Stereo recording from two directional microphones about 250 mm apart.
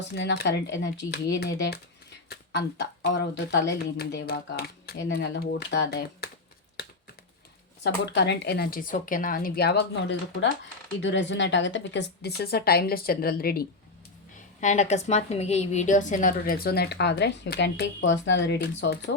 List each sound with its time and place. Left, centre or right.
0.1 s a woman's voice: left
7.9 s a woman's voice: left